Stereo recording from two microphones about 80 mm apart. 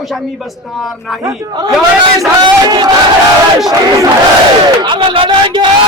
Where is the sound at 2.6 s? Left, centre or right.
Right.